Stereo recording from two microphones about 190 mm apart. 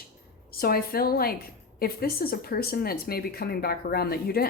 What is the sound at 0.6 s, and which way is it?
Speech, 50° left (ahead or behind).